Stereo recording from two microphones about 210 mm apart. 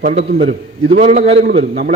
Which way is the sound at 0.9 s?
35° right (ahead or behind).